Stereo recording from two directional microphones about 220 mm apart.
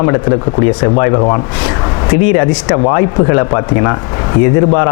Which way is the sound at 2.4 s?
20° left (ahead or behind).